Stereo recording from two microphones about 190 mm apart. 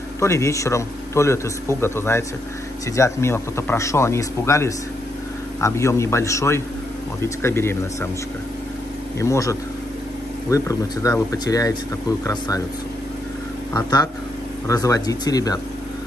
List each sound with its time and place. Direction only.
0.2 s speech: 15° left (ahead or behind)
9.2 s speech: 15° left (ahead or behind)
13.7 s speech: 20° left (ahead or behind)